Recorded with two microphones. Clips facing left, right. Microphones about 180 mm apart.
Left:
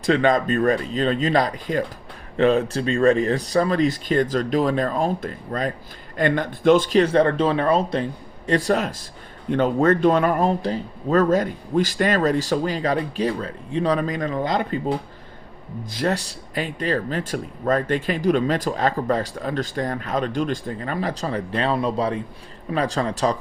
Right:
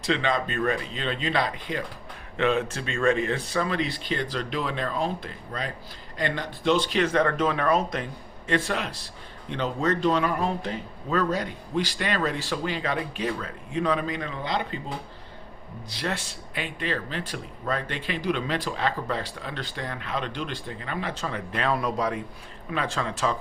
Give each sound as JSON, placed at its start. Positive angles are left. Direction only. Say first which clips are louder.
{"t": 0.0, "sound": "speech", "louder": "left 7 dB", "side_deg": 45}
{"t": 15.9, "sound": "speech", "louder": "left 8 dB", "side_deg": 45}